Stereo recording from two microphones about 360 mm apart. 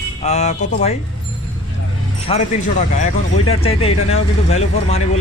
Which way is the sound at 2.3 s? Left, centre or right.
Centre.